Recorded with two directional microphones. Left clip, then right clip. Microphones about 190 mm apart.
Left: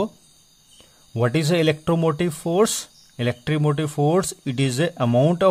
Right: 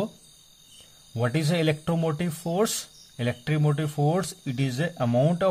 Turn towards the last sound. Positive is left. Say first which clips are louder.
# left 5 dB
turn(degrees=25)  # may be behind; listen again after turning